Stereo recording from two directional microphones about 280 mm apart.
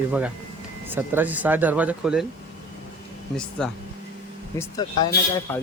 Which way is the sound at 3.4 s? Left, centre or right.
Centre.